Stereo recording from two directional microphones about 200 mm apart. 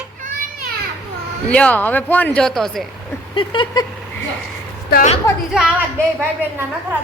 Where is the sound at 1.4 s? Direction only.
5° left (ahead or behind).